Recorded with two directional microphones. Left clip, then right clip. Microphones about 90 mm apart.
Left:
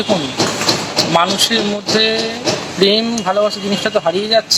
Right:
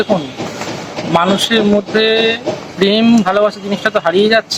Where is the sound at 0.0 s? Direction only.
25° right (ahead or behind).